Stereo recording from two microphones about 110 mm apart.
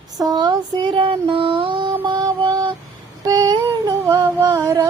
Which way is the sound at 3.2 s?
35° right (ahead or behind).